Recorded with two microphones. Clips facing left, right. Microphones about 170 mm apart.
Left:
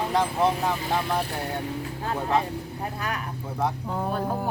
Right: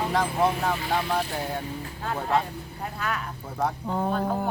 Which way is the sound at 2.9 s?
15° left (ahead or behind).